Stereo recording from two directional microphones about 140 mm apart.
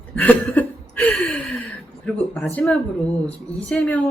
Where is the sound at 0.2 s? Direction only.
10° left (ahead or behind).